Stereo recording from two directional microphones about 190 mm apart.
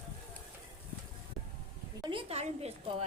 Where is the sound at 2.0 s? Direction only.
25° right (ahead or behind).